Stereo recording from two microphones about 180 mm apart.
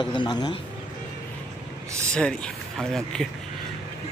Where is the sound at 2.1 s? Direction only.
5° left (ahead or behind).